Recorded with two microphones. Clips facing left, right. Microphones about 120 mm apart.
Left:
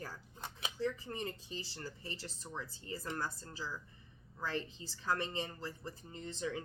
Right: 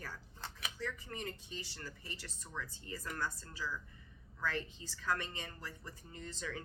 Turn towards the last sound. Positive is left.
turn(degrees=25)  # may be behind; listen again after turning